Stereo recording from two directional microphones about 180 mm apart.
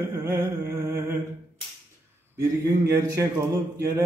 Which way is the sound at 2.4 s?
15° right (ahead or behind).